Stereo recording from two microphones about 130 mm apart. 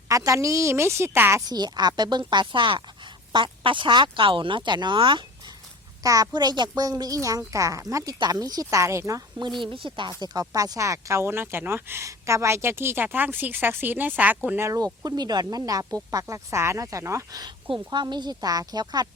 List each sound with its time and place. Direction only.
0.1 s a woman's voice: 25° right (ahead or behind)
6.0 s a woman's voice: 30° right (ahead or behind)
9.7 s a woman's voice: 40° right (ahead or behind)